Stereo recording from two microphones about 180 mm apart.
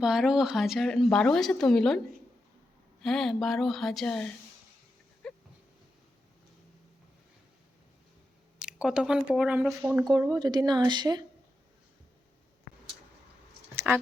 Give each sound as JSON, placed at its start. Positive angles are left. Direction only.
{"t": 0.0, "sound": "speech", "side_deg": -5}
{"t": 3.0, "sound": "speech", "side_deg": 0}
{"t": 5.2, "sound": "a sound", "side_deg": 5}
{"t": 8.6, "sound": "speech", "side_deg": -5}
{"t": 9.6, "sound": "speech", "side_deg": -20}
{"t": 13.9, "sound": "speech", "side_deg": -5}